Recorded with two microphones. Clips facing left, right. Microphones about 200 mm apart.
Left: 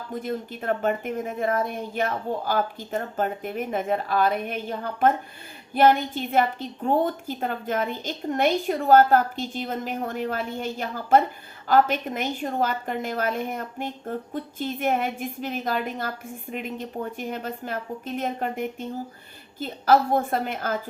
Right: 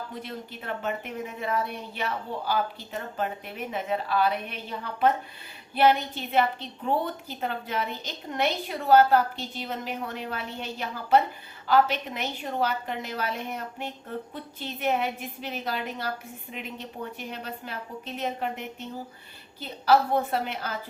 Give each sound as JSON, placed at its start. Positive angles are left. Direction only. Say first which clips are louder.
{"t": 0.1, "sound": "a woman's voice", "louder": "left 7 dB", "side_deg": 45}